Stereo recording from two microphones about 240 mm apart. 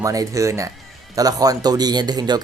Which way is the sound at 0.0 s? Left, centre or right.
Centre.